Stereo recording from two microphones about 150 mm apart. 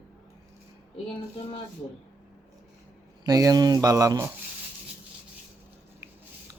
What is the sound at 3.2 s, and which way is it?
Speech, 25° right (ahead or behind).